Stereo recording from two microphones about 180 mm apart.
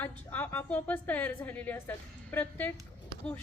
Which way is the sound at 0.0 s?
10° left (ahead or behind).